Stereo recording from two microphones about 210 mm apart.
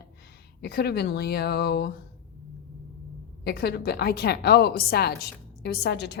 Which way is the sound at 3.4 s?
50° left (ahead or behind).